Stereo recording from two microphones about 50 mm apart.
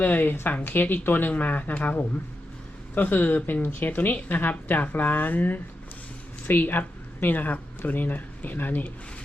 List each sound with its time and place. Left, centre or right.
0.0 s speech: left